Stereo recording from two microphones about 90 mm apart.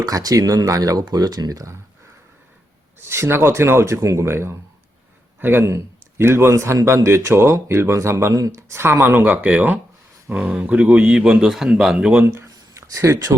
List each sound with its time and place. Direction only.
0.0 s speech: 45° right (ahead or behind)
3.0 s a man's voice: 30° right (ahead or behind); by 12.2 s 5° right (ahead or behind)
12.2 s a man's voice: 30° right (ahead or behind)
12.5 s a sound: 40° right (ahead or behind)